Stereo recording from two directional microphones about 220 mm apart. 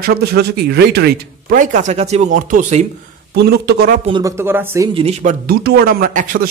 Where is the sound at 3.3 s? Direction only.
45° right (ahead or behind).